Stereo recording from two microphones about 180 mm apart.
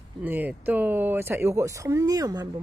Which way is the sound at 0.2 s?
10° right (ahead or behind).